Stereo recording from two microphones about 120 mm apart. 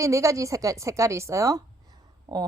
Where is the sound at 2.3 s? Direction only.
40° right (ahead or behind).